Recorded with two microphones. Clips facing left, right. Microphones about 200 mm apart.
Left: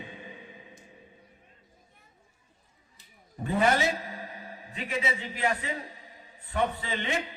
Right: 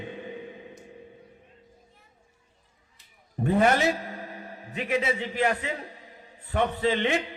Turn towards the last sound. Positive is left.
turn(degrees=-60)  # may be behind; listen again after turning